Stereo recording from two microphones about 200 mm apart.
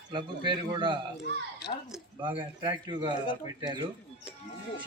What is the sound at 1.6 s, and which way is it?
Speech, 55° left (ahead or behind).